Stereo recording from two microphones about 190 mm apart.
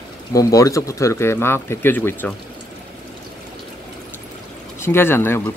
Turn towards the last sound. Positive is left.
turn(degrees=10)  # may be behind; listen again after turning